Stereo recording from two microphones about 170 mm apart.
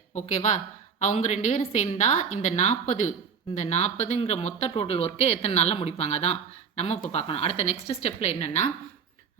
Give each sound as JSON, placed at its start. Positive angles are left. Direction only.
{"t": 0.2, "sound": "a woman's voice", "side_deg": 45}